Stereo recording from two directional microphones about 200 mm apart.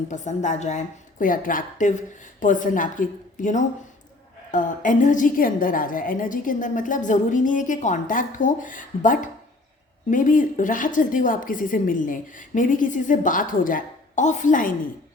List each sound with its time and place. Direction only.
0.1 s a woman's voice: 35° left (ahead or behind)